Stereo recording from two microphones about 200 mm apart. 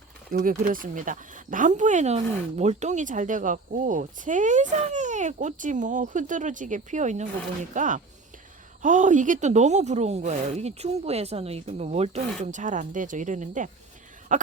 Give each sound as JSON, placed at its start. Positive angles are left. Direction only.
{"t": 0.3, "sound": "speech", "side_deg": -45}